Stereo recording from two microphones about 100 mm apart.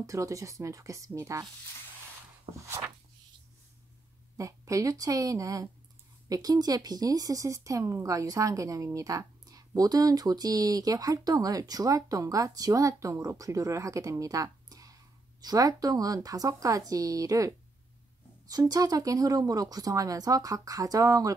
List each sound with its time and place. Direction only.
0.0 s speech: 30° right (ahead or behind)
2.6 s a sound: 30° right (ahead or behind)
4.4 s speech: 35° right (ahead or behind)